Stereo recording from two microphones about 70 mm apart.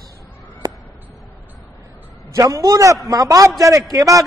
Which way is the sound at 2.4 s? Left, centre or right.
Right.